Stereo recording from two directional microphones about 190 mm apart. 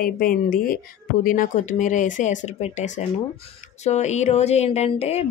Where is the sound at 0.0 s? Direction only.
50° left (ahead or behind).